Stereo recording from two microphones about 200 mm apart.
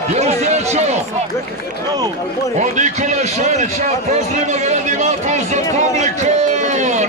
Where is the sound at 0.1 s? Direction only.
35° right (ahead or behind).